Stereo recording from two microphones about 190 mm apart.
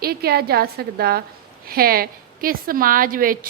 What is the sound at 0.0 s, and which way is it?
A woman's voice, 55° right (ahead or behind).